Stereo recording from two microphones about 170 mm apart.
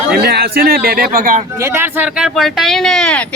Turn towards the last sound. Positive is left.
turn(degrees=5)  # may be behind; listen again after turning